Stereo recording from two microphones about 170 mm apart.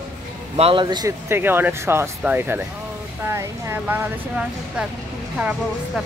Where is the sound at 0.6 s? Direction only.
30° right (ahead or behind).